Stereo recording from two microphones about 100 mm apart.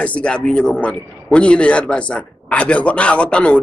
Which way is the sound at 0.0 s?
10° left (ahead or behind).